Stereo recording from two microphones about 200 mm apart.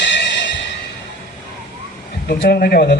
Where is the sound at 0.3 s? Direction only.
60° left (ahead or behind).